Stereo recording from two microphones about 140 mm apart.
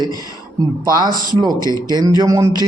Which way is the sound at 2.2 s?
25° right (ahead or behind).